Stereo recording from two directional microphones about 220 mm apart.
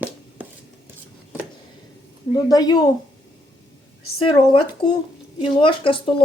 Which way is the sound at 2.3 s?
20° left (ahead or behind).